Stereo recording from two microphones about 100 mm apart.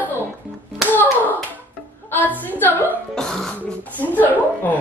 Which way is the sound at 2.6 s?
20° left (ahead or behind).